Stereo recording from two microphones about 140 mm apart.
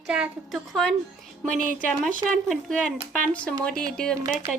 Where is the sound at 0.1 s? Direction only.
5° right (ahead or behind).